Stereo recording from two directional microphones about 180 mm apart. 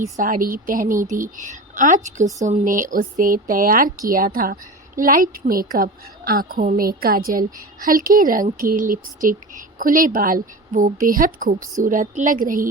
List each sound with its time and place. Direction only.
0.2 s a woman's voice: 50° right (ahead or behind)